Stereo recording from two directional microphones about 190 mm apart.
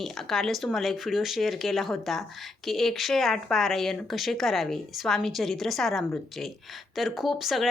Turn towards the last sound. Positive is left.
turn(degrees=0)  # may be behind; listen again after turning